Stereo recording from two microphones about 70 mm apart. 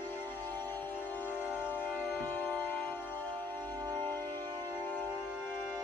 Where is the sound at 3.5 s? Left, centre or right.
Right.